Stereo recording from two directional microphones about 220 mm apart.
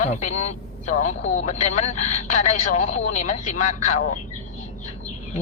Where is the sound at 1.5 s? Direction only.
35° left (ahead or behind).